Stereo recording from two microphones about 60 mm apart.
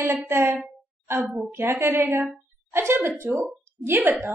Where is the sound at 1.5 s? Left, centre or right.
Right.